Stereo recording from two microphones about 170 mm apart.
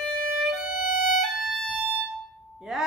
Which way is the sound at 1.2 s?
Centre (ahead or behind).